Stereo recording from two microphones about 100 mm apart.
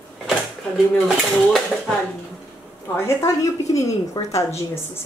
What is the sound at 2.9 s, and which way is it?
A woman's voice, 25° left (ahead or behind).